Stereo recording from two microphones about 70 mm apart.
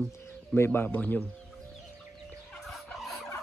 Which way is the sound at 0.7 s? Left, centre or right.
Left.